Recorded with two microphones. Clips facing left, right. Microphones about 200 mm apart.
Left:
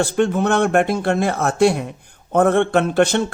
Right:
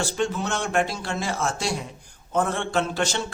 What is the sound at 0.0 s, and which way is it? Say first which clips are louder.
Speech: left 8 dB; 55° left (ahead or behind).